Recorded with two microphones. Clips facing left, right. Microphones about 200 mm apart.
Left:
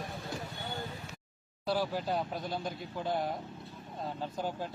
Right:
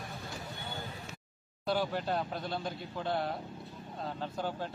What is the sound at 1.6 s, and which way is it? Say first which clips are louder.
Speech: even; 5° left (ahead or behind).